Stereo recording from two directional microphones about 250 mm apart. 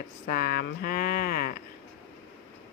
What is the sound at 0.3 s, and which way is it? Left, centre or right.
Speech, left.